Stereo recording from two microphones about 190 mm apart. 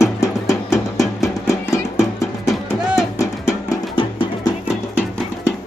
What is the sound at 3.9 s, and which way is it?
Music, 25° left (ahead or behind).